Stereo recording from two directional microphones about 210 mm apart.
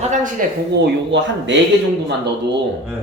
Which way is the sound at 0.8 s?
60° right (ahead or behind).